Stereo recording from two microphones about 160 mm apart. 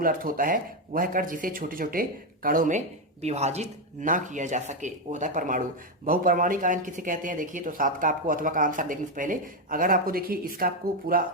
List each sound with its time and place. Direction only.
0.0 s speech: 60° right (ahead or behind)